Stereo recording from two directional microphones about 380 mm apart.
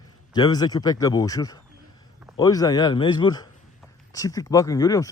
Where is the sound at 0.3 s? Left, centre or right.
Centre.